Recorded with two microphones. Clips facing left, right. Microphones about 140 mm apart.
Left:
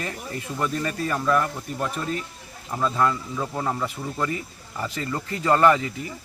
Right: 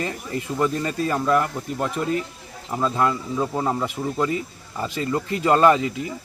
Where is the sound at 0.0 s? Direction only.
25° right (ahead or behind).